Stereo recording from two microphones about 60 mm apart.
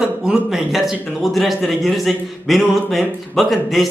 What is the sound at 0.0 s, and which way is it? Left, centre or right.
A man's voice, centre.